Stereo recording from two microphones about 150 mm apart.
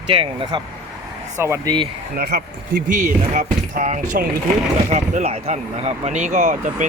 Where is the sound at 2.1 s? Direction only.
90° right.